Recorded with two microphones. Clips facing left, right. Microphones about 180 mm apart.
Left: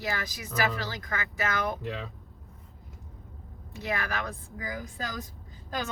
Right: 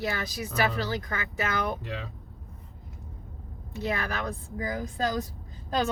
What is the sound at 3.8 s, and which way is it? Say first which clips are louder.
Speech: right 2 dB; 30° right (ahead or behind).